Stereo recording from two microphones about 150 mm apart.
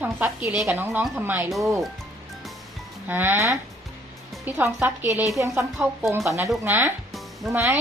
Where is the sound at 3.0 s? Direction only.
15° right (ahead or behind).